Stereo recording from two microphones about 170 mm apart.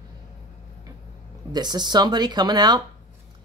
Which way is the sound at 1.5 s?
25° right (ahead or behind).